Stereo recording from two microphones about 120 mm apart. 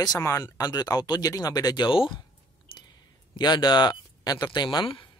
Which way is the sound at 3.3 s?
35° left (ahead or behind).